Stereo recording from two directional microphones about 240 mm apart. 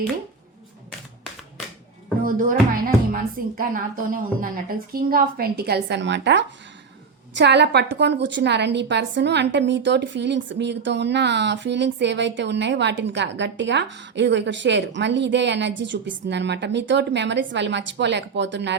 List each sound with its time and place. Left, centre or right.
2.2 s a woman's voice: right